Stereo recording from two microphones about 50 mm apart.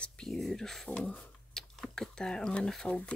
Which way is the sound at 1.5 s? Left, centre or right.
Centre.